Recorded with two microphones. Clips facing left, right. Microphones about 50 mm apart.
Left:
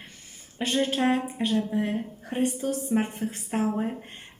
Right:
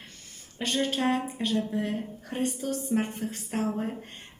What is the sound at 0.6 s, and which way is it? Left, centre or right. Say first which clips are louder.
Speech: left 3 dB; centre.